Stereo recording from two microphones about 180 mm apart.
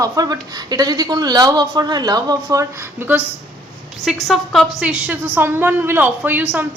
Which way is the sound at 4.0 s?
Centre (ahead or behind).